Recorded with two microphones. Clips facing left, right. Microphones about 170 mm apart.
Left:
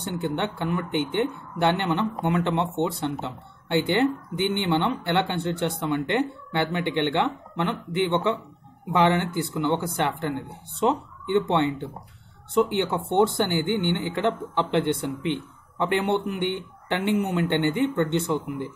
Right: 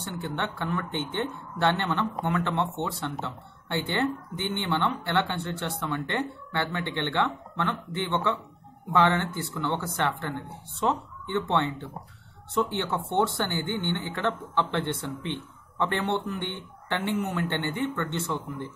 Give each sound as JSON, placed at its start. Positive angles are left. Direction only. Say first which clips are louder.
{"t": 0.0, "sound": "speech", "louder": "left 5 dB", "side_deg": 15}